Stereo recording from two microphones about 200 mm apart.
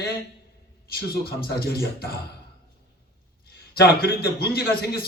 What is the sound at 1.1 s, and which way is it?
A man's voice, 50° left (ahead or behind).